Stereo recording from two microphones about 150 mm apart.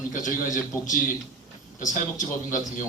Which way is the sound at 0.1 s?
60° left (ahead or behind).